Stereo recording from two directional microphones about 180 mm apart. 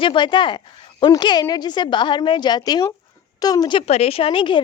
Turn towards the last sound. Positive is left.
turn(degrees=25)  # may be behind; listen again after turning